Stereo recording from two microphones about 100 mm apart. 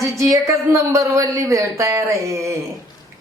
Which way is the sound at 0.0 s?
30° right (ahead or behind).